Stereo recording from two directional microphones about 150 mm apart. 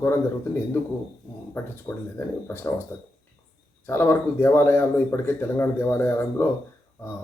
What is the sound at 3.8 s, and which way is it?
Speech, 15° left (ahead or behind).